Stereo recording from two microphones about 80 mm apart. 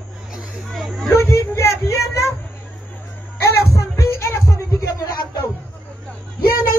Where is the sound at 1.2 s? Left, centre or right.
Left.